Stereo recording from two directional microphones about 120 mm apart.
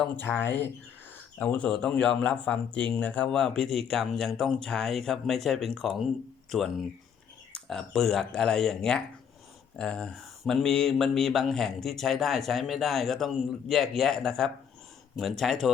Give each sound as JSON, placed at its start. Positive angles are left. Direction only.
{"t": 0.0, "sound": "speech", "side_deg": 15}